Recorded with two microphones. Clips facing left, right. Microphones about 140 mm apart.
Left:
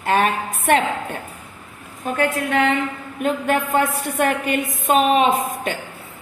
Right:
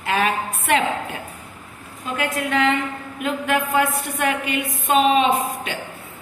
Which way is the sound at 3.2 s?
45° left (ahead or behind).